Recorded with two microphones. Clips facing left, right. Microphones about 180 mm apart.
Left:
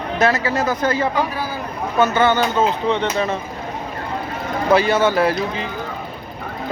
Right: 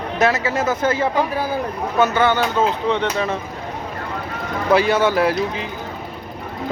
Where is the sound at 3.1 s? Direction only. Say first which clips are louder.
Left 1 dB; centre (ahead or behind).